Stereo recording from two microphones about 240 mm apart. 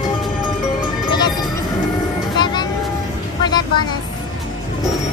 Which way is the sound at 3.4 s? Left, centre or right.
Centre.